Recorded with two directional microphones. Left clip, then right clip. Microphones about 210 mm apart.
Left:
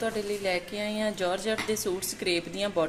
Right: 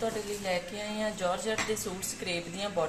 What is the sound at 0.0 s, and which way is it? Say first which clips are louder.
Speech: left 4 dB; 55° left (ahead or behind).